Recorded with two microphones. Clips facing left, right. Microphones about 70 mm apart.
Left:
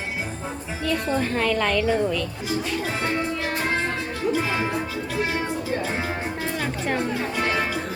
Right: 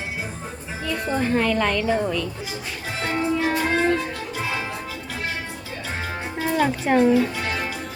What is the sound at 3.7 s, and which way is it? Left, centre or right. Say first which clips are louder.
Music: right 5 dB; centre.